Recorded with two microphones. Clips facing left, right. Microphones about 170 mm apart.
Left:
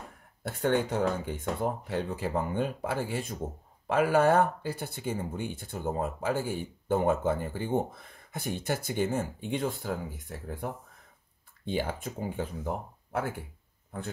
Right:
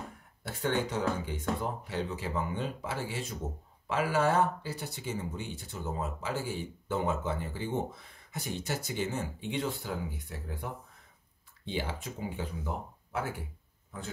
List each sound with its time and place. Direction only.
0.4 s speech: 55° left (ahead or behind)